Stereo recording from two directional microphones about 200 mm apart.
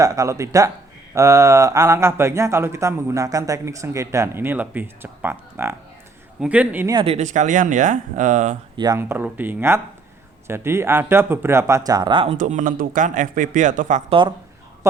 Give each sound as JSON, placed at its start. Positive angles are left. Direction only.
{"t": 0.0, "sound": "a man's voice", "side_deg": -15}
{"t": 6.9, "sound": "speech", "side_deg": -30}
{"t": 8.7, "sound": "a man's voice", "side_deg": -20}
{"t": 12.4, "sound": "speech", "side_deg": -40}
{"t": 14.1, "sound": "speech", "side_deg": -25}